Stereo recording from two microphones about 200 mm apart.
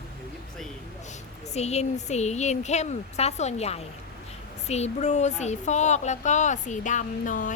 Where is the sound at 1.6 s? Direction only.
35° left (ahead or behind).